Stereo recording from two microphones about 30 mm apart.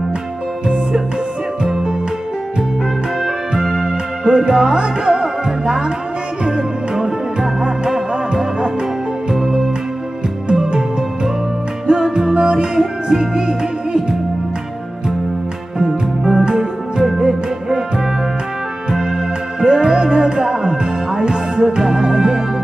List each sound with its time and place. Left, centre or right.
3.5 s music: centre
4.2 s music: right
10.5 s music: right
12.0 s music: right
15.8 s music: right
18.9 s organ: right
19.6 s music: right